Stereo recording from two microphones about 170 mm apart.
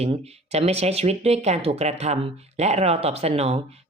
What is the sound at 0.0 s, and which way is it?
Speech, 35° right (ahead or behind).